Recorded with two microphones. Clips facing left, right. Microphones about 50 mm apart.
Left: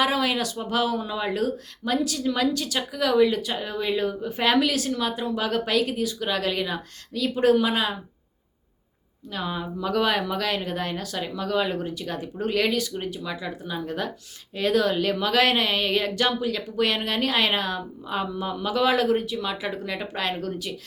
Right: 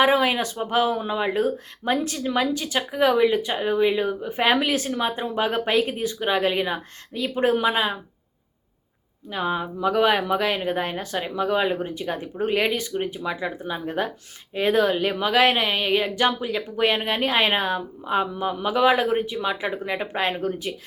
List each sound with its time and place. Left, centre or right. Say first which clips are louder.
0.0 s speech: right 4 dB; right
9.3 s speech: right 4 dB; right